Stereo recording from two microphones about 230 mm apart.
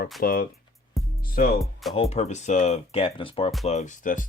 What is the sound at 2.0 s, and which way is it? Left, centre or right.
Speech, left.